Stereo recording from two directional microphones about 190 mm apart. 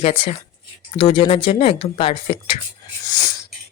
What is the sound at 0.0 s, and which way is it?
Speech, 30° left (ahead or behind).